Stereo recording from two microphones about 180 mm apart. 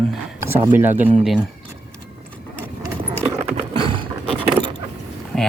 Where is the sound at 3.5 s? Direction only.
30° right (ahead or behind).